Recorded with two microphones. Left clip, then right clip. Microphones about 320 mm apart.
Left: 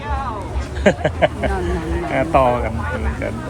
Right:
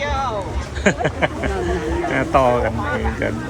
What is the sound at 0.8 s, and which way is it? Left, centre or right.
Speech, centre.